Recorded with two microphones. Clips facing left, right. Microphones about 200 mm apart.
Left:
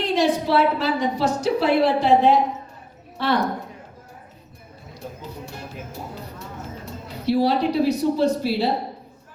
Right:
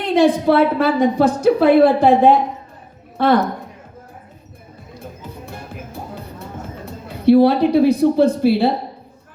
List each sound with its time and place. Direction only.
0.0 s a sound: 55° right (ahead or behind)
0.4 s speech: 55° right (ahead or behind)
5.5 s music: 55° right (ahead or behind)
6.8 s speech: 55° right (ahead or behind)